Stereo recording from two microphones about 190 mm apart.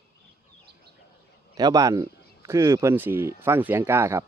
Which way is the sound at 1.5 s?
20° right (ahead or behind).